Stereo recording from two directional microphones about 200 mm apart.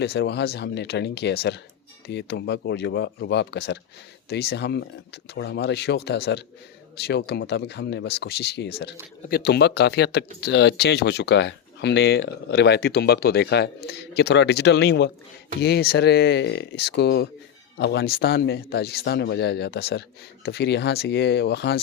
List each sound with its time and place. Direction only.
0.0 s speech: 55° left (ahead or behind)